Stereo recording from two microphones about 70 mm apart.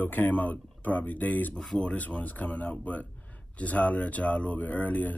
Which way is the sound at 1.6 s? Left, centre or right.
Centre.